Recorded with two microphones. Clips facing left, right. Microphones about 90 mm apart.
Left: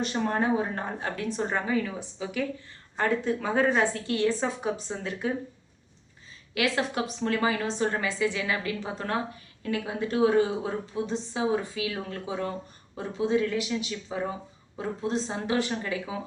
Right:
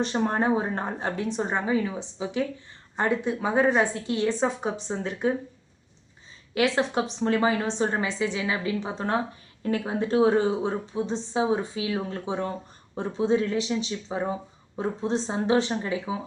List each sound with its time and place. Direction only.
0.0 s a woman's voice: 30° right (ahead or behind)
4.4 s a woman's voice: 30° right (ahead or behind)
6.5 s a woman's voice: 25° right (ahead or behind)